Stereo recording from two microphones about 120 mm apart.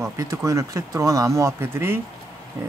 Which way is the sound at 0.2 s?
25° right (ahead or behind).